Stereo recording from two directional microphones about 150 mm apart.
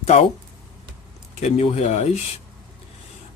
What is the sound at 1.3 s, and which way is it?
Speech, 45° left (ahead or behind).